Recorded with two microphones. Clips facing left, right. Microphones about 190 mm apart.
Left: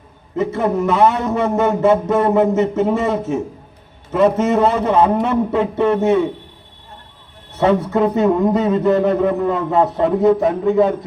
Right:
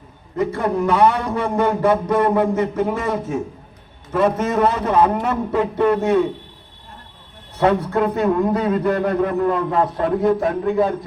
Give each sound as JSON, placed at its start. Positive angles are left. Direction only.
{"t": 0.3, "sound": "a man's voice", "side_deg": 25}
{"t": 7.6, "sound": "a man's voice", "side_deg": 20}